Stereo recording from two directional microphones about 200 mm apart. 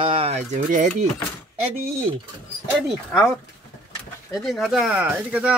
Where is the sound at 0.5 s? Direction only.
40° right (ahead or behind).